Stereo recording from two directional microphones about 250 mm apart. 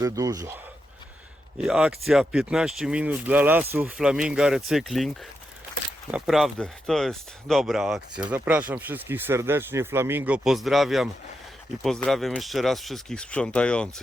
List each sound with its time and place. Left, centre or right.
0.0 s speech: centre
1.6 s speech: centre